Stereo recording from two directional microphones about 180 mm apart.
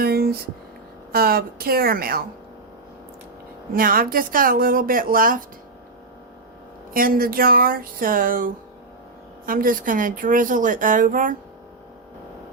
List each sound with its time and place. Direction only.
0.0 s a sound: 60° right (ahead or behind)
1.1 s a woman's voice: 55° right (ahead or behind)
3.8 s a woman's voice: 55° right (ahead or behind)
6.9 s a woman's voice: 55° right (ahead or behind)